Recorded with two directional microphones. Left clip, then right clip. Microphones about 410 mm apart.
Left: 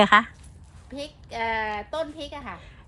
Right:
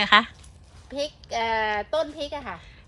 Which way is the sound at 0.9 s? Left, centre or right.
Centre.